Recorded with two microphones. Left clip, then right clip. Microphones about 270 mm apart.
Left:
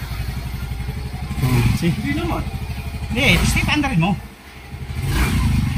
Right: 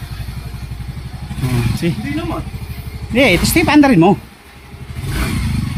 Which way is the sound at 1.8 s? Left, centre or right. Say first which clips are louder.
Right 3 dB; centre.